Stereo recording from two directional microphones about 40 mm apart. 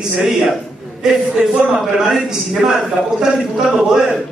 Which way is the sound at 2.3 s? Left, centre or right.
Centre.